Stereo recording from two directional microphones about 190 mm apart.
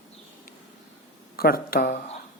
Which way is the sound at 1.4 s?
50° left (ahead or behind).